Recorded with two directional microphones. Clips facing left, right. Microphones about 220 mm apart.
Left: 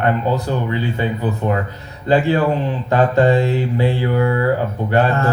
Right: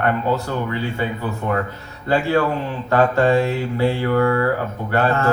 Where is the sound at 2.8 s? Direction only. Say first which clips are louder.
Left 1 dB; 20° left (ahead or behind).